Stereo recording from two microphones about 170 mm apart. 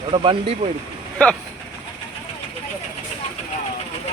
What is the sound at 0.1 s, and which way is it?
Speech, 30° right (ahead or behind).